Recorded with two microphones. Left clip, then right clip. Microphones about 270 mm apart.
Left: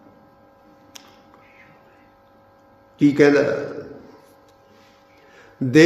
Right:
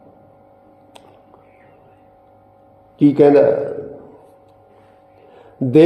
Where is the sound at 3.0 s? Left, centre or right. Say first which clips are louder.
Right 4 dB; centre.